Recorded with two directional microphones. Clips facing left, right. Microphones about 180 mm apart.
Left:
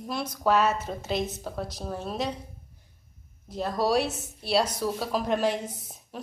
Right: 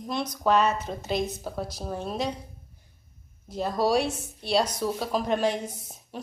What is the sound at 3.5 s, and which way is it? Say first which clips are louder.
A woman's voice: right 1 dB; centre (ahead or behind).